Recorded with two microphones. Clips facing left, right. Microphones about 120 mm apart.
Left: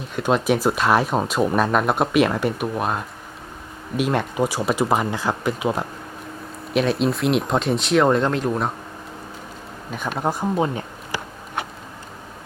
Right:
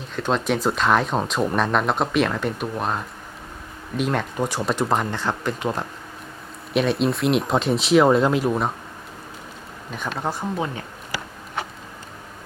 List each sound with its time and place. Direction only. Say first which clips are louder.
0.2 s speech: left 3 dB; 10° left (ahead or behind)
9.9 s speech: left 3 dB; 5° left (ahead or behind); by 10.8 s 25° left (ahead or behind)